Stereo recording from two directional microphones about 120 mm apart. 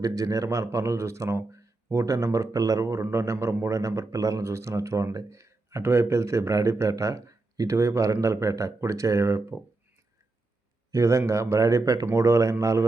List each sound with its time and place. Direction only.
0.0 s speech: 30° right (ahead or behind)
10.9 s speech: 25° right (ahead or behind)